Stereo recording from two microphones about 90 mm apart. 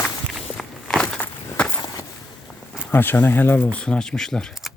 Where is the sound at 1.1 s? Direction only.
20° left (ahead or behind).